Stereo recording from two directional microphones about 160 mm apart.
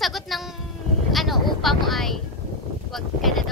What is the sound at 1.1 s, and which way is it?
Vehicle, centre (ahead or behind).